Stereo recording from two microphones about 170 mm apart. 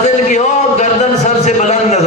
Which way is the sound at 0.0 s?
45° left (ahead or behind).